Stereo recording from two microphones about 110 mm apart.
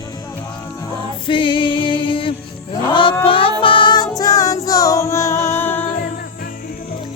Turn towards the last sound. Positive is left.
turn(degrees=20)  # may be behind; listen again after turning